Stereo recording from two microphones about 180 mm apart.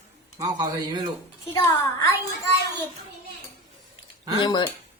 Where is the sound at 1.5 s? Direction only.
20° left (ahead or behind).